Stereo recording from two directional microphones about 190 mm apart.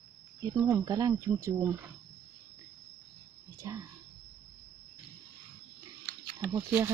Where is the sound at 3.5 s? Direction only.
15° right (ahead or behind).